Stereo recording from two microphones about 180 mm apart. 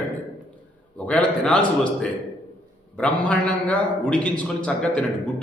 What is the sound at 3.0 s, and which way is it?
A man's voice, 5° left (ahead or behind).